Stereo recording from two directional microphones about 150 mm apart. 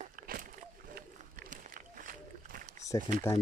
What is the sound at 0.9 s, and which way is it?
Run, 70° right (ahead or behind).